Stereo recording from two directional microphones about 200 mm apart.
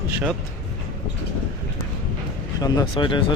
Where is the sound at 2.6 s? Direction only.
20° left (ahead or behind).